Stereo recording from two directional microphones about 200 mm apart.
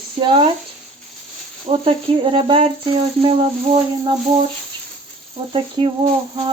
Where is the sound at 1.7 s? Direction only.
25° right (ahead or behind).